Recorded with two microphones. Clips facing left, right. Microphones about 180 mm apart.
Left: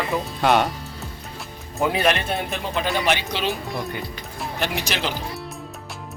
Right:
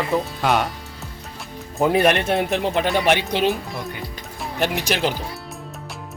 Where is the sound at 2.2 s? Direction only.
70° right (ahead or behind).